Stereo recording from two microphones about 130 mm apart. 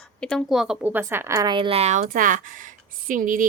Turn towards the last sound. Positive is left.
turn(degrees=-90)